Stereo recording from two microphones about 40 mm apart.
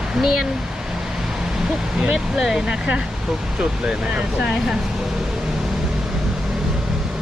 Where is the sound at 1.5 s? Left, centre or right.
Centre.